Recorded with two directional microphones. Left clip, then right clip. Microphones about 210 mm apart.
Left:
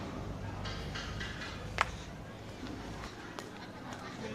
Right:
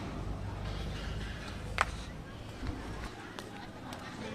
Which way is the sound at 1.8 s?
20° right (ahead or behind).